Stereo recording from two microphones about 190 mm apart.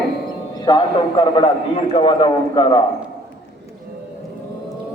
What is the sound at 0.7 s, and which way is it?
A man's voice, 25° left (ahead or behind).